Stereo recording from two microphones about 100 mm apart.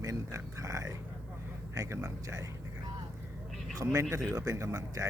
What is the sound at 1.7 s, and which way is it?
Speech, 30° right (ahead or behind).